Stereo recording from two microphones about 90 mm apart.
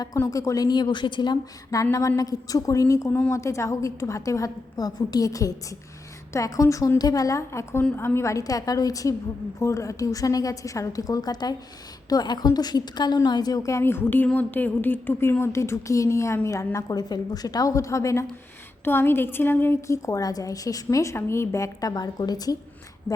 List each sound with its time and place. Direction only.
0.3 s a woman's voice: 40° left (ahead or behind); by 1.4 s 60° left (ahead or behind)
1.7 s a woman's voice: 40° left (ahead or behind)